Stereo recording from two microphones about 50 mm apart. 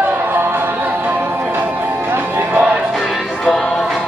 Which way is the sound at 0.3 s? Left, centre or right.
Right.